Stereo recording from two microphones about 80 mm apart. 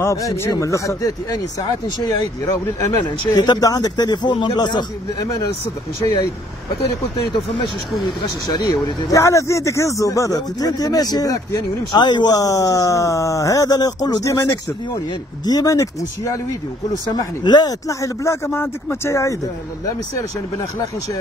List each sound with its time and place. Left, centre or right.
0.0 s speech: left
2.4 s speech: left
3.3 s speech: left
8.5 s speech: left
12.0 s speech: left
12.4 s speech: left
17.1 s speech: left
17.8 s speech: left